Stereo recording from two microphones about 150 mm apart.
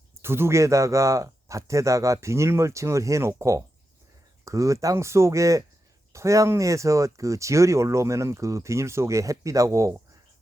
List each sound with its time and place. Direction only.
0.1 s speech: 15° right (ahead or behind)